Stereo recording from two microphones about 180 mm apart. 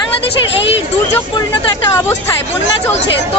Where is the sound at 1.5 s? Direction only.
15° left (ahead or behind).